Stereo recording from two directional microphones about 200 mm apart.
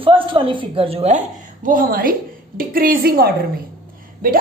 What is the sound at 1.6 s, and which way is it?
A woman's voice, 45° right (ahead or behind).